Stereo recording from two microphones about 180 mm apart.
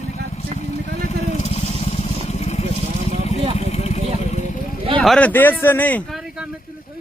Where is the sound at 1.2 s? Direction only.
35° left (ahead or behind).